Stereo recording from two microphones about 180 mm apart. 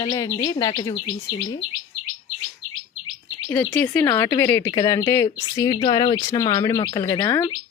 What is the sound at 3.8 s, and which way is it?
A woman's voice, 15° left (ahead or behind).